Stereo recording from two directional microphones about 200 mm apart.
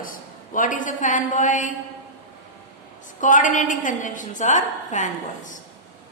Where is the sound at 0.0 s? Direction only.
45° left (ahead or behind).